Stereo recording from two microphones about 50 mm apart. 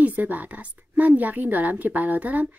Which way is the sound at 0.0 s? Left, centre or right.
Right.